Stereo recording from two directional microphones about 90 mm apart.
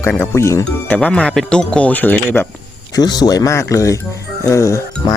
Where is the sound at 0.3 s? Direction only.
30° left (ahead or behind).